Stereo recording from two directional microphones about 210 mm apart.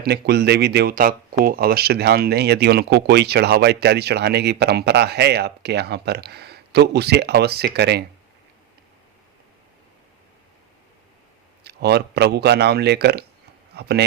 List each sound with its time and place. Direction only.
0.0 s speech: 50° right (ahead or behind)
11.6 s speech: 50° right (ahead or behind)